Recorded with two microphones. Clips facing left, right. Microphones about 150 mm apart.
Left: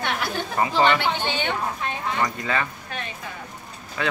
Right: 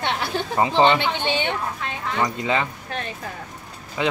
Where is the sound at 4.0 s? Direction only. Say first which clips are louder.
Right 3 dB; 20° right (ahead or behind).